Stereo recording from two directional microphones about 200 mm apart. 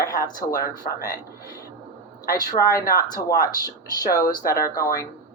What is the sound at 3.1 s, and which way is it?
Speech, 45° left (ahead or behind).